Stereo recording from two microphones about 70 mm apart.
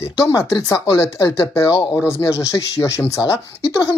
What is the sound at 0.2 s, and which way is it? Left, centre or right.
Speech, left.